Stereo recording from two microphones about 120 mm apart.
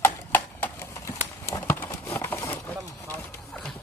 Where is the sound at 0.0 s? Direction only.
20° left (ahead or behind).